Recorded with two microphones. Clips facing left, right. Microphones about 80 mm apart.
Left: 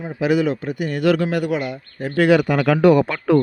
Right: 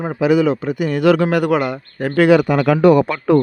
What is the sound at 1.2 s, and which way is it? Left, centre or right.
Speech, right.